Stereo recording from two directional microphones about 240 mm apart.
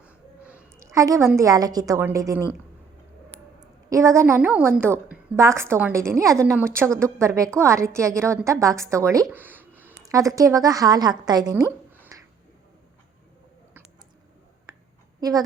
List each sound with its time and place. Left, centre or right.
0.0 s a woman's voice: centre
12.1 s a sound: centre
15.2 s a woman's voice: centre